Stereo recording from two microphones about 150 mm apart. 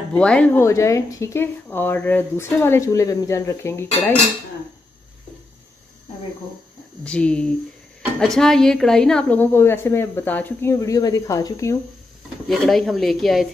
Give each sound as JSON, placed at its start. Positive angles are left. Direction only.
{"t": 0.1, "sound": "a woman's voice", "side_deg": 5}
{"t": 7.1, "sound": "a woman's voice", "side_deg": 5}
{"t": 12.4, "sound": "speech", "side_deg": 0}